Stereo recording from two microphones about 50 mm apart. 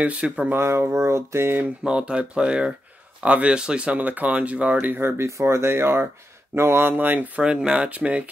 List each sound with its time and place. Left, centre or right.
0.0 s speech: right
0.6 s speech: right
1.9 s speech: right
5.2 s speech: right
7.4 s speech: right